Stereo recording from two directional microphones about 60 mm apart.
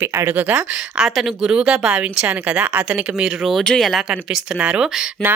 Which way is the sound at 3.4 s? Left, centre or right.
Centre.